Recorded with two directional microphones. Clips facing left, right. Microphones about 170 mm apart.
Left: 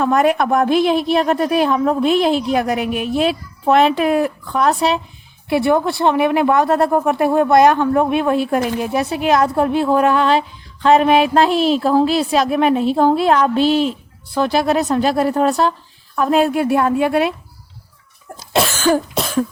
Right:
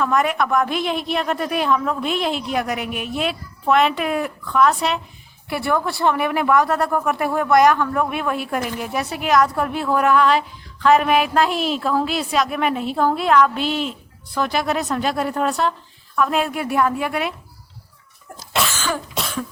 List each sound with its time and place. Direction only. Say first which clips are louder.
0.0 s a woman's voice: left 5 dB; 35° left (ahead or behind)
5.5 s a woman's voice: left 7 dB; 25° left (ahead or behind)
18.5 s cough: left 8 dB; 40° left (ahead or behind)